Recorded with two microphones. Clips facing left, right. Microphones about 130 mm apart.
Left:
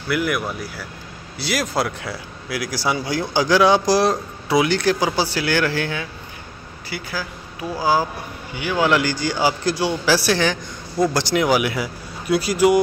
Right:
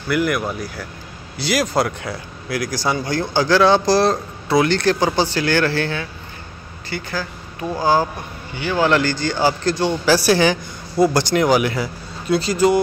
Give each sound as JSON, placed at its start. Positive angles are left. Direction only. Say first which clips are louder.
{"t": 0.1, "sound": "speech", "louder": "right 2 dB", "side_deg": 0}